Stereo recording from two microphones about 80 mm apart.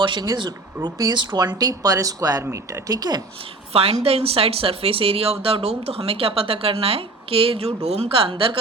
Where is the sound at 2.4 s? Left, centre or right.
Right.